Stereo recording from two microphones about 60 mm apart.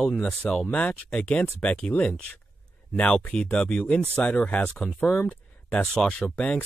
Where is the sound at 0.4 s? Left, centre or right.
Centre.